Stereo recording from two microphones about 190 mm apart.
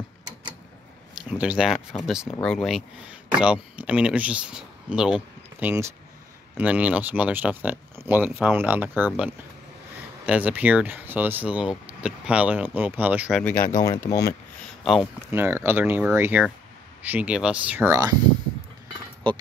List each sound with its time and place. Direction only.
1.1 s speech: 5° right (ahead or behind)
13.7 s speech: 20° left (ahead or behind)
14.8 s speech: centre (ahead or behind)